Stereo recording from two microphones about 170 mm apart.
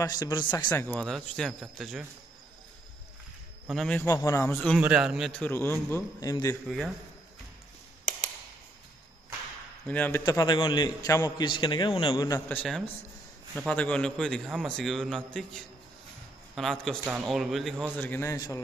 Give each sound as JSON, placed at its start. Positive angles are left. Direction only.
{"t": 0.0, "sound": "a man's voice", "side_deg": 20}
{"t": 0.7, "sound": "speech", "side_deg": 10}
{"t": 3.6, "sound": "speech", "side_deg": 5}
{"t": 4.1, "sound": "a man's voice", "side_deg": 20}
{"t": 4.7, "sound": "a man's voice", "side_deg": -5}
{"t": 9.8, "sound": "a man's voice", "side_deg": 10}
{"t": 10.2, "sound": "a man's voice", "side_deg": 25}
{"t": 12.4, "sound": "speech", "side_deg": 5}
{"t": 17.0, "sound": "speech", "side_deg": -10}
{"t": 18.0, "sound": "a man's voice", "side_deg": 15}